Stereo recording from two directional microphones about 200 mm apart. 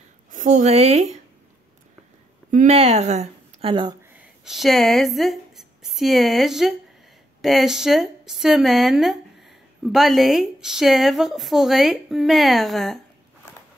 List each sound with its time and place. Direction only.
0.3 s speech: 40° right (ahead or behind)
2.5 s speech: 35° right (ahead or behind)
4.2 s a woman's voice: centre (ahead or behind)